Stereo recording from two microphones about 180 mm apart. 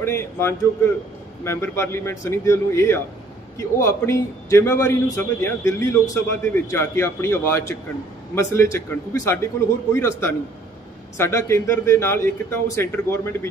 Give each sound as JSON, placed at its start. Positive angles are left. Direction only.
{"t": 0.0, "sound": "a man's voice", "side_deg": 15}